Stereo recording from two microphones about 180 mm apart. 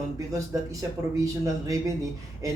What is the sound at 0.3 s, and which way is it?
Speech, 20° right (ahead or behind).